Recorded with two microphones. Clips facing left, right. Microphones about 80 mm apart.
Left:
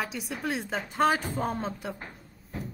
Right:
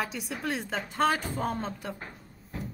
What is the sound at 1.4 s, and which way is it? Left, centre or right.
Speech, centre.